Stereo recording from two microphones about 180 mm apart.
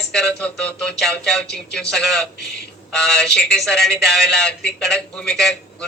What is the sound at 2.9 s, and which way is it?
Speech, 5° left (ahead or behind).